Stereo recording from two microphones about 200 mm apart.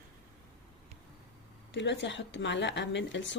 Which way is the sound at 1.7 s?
60° left (ahead or behind).